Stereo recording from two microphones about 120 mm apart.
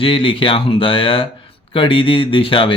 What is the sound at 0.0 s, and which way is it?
Speech, 45° left (ahead or behind).